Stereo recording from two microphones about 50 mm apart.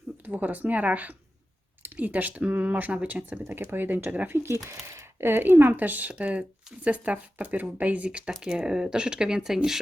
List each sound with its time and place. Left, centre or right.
0.3 s speech: right
3.5 s speech: right
4.4 s speech: right; by 9.6 s centre